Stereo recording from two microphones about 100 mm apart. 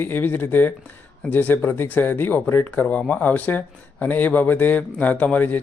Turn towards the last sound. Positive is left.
turn(degrees=15)  # may be behind; listen again after turning